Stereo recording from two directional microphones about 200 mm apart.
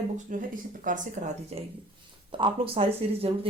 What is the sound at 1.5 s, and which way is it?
Speech, 30° right (ahead or behind).